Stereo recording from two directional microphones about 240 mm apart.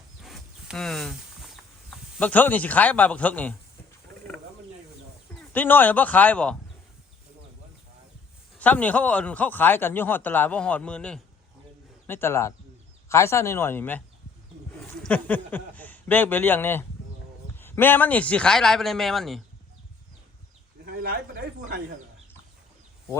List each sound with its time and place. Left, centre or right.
0.2 s a sound: centre
2.1 s a man's voice: centre
5.3 s speech: centre
8.5 s a man's voice: centre
20.8 s a sound: right
21.6 s speech: right